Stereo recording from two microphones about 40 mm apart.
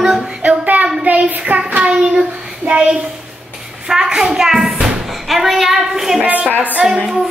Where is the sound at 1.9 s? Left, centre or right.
Right.